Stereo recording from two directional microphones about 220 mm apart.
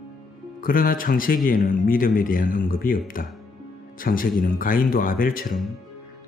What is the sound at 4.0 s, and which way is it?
Speech, 40° left (ahead or behind).